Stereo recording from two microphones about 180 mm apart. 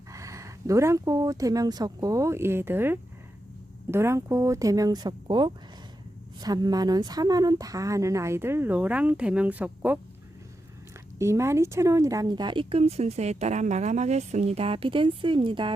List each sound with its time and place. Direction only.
0.1 s speech: 15° right (ahead or behind)
11.2 s speech: 15° right (ahead or behind)